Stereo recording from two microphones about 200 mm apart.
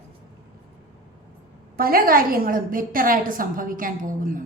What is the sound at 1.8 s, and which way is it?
A woman's voice, 45° right (ahead or behind).